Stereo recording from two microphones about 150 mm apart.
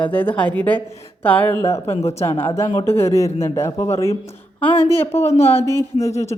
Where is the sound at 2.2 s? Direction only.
15° left (ahead or behind).